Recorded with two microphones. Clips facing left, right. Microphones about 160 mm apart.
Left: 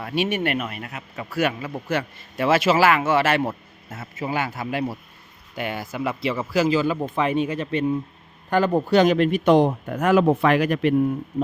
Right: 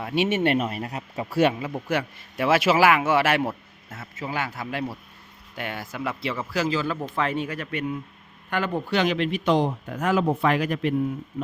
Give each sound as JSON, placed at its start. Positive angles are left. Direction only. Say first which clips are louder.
{"t": 0.0, "sound": "speech", "louder": "right 1 dB", "side_deg": -20}
{"t": 1.5, "sound": "a man's voice", "louder": "left 1 dB", "side_deg": -15}
{"t": 4.2, "sound": "speech", "louder": "left 4 dB", "side_deg": 5}